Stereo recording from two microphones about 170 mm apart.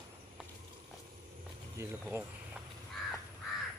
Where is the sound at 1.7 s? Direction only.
15° right (ahead or behind).